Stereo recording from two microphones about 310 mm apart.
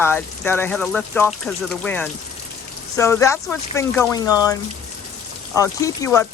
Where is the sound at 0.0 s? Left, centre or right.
Centre.